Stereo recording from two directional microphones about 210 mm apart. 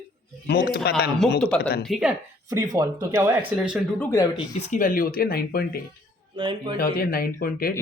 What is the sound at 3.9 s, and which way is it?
Speech, 15° left (ahead or behind).